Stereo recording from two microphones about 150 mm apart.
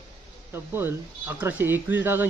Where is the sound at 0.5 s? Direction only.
15° right (ahead or behind).